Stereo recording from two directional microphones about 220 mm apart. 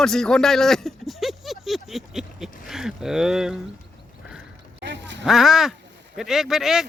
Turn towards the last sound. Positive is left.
turn(degrees=0)  # may be behind; listen again after turning